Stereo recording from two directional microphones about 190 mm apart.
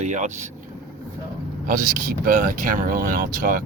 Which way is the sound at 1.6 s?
45° right (ahead or behind).